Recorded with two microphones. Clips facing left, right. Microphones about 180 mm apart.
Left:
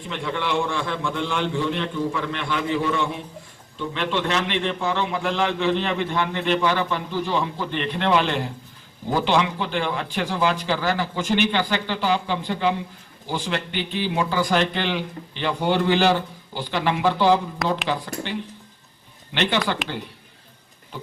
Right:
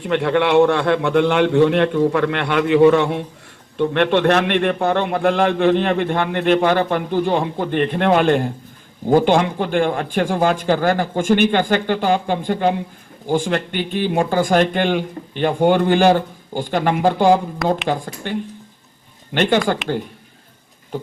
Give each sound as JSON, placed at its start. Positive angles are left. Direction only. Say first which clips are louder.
{"t": 0.0, "sound": "a man's voice", "louder": "right 10 dB", "side_deg": -65}
{"t": 20.9, "sound": "a man's voice", "louder": "right 9 dB", "side_deg": -45}